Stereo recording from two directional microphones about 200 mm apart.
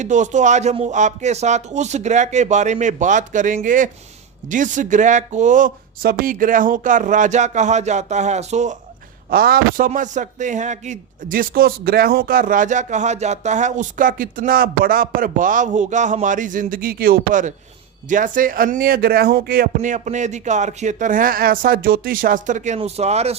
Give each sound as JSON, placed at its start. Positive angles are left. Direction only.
{"t": 0.0, "sound": "speech", "side_deg": -35}
{"t": 9.3, "sound": "speech", "side_deg": -45}